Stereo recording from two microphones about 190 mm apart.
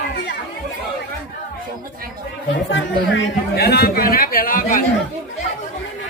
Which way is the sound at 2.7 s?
75° left (ahead or behind).